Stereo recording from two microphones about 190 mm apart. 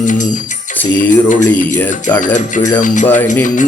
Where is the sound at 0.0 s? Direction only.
40° left (ahead or behind).